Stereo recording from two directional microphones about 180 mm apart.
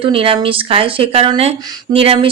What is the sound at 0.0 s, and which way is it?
Speech, 30° right (ahead or behind).